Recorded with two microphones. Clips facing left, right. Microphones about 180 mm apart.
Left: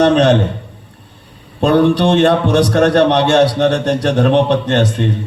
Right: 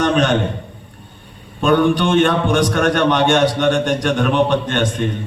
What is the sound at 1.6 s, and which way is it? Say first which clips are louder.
A man's voice: left 3 dB; 35° left (ahead or behind).